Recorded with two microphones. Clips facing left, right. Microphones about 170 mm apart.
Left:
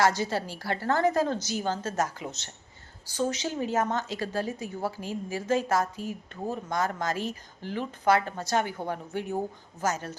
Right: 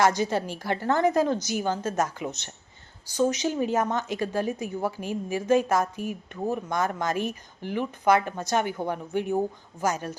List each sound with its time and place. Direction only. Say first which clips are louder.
0.0 s a woman's voice: right 2 dB; 20° right (ahead or behind)